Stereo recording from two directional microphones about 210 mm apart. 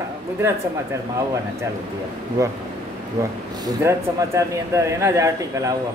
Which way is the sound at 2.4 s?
15° right (ahead or behind).